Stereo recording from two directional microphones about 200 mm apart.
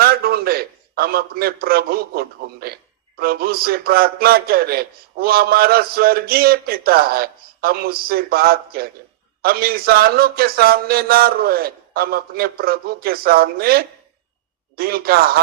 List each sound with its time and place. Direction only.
0.0 s a man's voice: 50° right (ahead or behind)